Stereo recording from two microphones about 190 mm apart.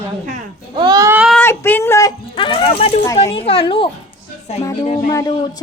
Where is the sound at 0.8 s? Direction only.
20° right (ahead or behind).